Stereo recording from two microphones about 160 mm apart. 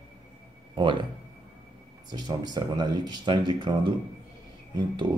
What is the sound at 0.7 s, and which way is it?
Speech, 30° right (ahead or behind).